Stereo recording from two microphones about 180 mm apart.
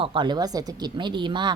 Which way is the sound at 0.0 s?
25° right (ahead or behind).